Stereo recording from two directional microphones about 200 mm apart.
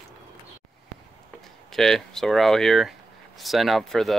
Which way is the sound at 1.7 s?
Centre (ahead or behind).